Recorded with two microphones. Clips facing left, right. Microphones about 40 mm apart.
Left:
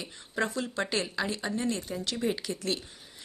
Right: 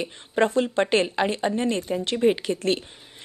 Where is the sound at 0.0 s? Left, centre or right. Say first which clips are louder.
Right 9 dB; right.